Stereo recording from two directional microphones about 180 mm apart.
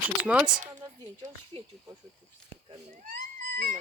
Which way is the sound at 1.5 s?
30° right (ahead or behind).